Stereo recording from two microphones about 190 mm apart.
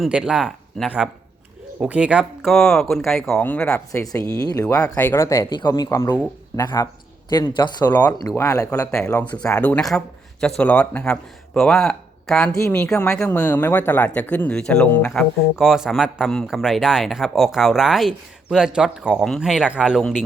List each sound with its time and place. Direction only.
0.0 s speech: 5° right (ahead or behind)
4.0 s speech: 20° left (ahead or behind)
8.9 s speech: 5° left (ahead or behind)